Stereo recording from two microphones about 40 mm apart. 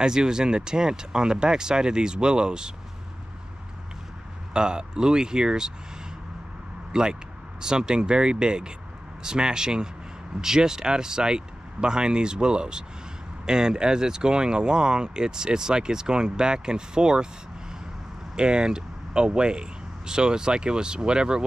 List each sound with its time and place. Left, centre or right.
0.0 s speech: centre
4.6 s speech: right
6.9 s speech: centre
18.3 s speech: right